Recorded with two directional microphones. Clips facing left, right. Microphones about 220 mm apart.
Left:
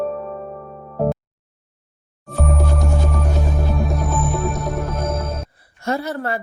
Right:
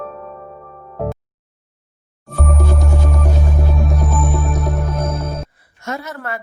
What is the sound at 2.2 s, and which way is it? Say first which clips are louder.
Music: even; centre (ahead or behind).